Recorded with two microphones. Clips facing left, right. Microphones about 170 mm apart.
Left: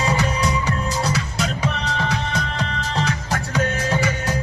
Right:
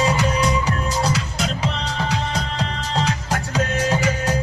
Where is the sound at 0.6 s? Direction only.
35° right (ahead or behind).